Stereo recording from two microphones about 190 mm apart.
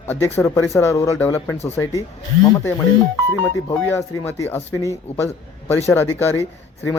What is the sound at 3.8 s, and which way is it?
A man's voice, 10° left (ahead or behind).